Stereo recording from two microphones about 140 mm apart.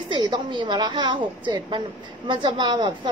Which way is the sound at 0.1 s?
35° right (ahead or behind).